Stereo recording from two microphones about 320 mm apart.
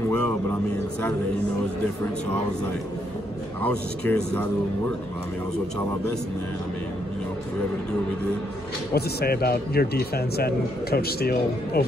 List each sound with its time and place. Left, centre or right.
3.6 s speech: centre
8.9 s a man's voice: left